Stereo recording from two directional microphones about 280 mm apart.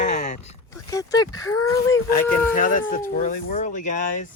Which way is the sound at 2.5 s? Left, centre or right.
Left.